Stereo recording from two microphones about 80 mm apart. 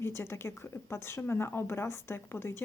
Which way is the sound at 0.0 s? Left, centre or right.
Left.